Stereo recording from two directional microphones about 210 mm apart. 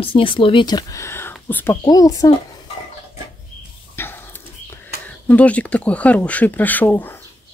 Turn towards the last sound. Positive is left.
turn(degrees=10)  # may be behind; listen again after turning